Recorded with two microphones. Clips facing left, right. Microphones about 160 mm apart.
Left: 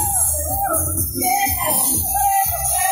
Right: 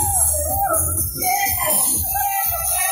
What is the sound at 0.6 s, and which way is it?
Music, 10° left (ahead or behind).